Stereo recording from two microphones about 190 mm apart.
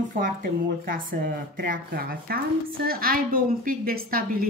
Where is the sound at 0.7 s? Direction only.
50° right (ahead or behind).